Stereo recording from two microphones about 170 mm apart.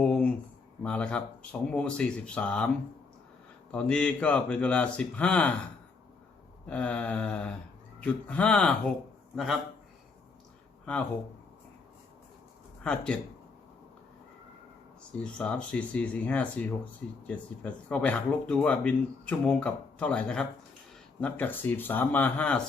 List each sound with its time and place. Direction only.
0.0 s a sound: 5° left (ahead or behind)
0.8 s speech: 5° left (ahead or behind)
3.7 s speech: 5° left (ahead or behind)
6.7 s a man's voice: 5° left (ahead or behind)
12.8 s speech: 5° left (ahead or behind)
15.2 s speech: 5° left (ahead or behind)